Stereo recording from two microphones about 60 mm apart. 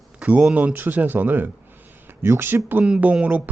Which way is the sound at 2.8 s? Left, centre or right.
Right.